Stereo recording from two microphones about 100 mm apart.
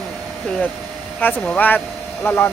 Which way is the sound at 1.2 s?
20° left (ahead or behind).